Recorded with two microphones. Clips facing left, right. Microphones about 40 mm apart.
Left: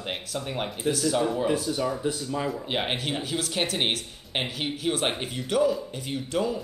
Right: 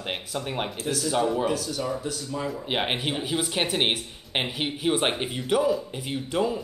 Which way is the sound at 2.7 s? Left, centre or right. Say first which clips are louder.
Right 4 dB; centre.